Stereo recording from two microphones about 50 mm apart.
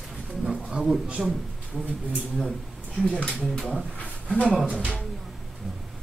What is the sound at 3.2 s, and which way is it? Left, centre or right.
Speech, centre.